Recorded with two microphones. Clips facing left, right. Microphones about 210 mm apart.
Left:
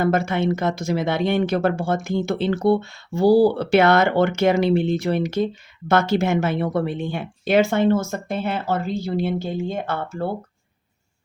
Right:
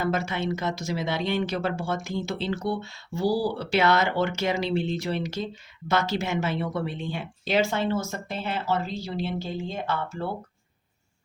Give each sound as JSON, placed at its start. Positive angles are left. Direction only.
{"t": 0.0, "sound": "speech", "side_deg": 55}